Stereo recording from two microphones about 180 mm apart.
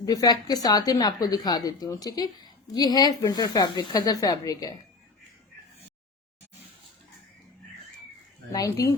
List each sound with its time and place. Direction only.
0.0 s a woman's voice: 20° left (ahead or behind)
8.5 s speech: 15° left (ahead or behind)